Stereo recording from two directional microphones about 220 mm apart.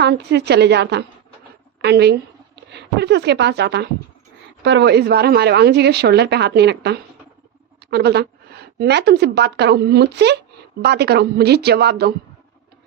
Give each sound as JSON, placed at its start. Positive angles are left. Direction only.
{"t": 0.0, "sound": "a woman's voice", "side_deg": -50}